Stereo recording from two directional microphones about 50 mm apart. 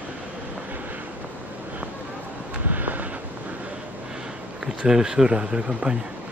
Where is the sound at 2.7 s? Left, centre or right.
Right.